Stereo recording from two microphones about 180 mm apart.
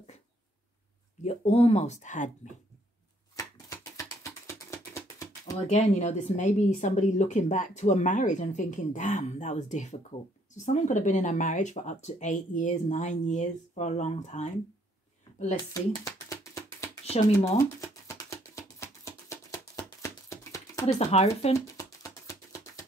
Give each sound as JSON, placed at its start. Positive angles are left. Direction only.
{"t": 1.2, "sound": "speech", "side_deg": 35}
{"t": 3.3, "sound": "music", "side_deg": 20}
{"t": 5.7, "sound": "speech", "side_deg": 40}
{"t": 15.5, "sound": "music", "side_deg": 20}
{"t": 17.0, "sound": "speech", "side_deg": 35}
{"t": 17.6, "sound": "music", "side_deg": 15}
{"t": 21.0, "sound": "speech", "side_deg": 35}
{"t": 21.5, "sound": "music", "side_deg": 20}